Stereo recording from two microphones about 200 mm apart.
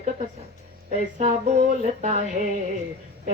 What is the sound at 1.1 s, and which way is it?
A woman's voice, 35° right (ahead or behind).